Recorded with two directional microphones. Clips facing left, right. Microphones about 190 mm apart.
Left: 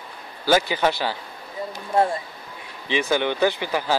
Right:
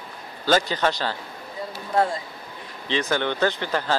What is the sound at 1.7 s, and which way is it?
Speech, 25° left (ahead or behind).